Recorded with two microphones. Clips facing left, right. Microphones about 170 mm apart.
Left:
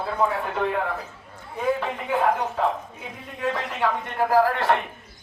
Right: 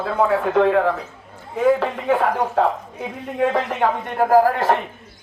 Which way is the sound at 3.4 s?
50° right (ahead or behind).